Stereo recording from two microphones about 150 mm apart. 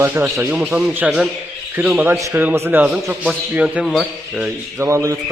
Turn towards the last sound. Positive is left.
turn(degrees=-15)  # may be behind; listen again after turning